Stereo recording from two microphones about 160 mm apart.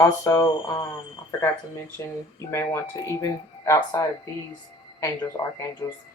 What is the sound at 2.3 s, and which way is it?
Speech, 15° left (ahead or behind).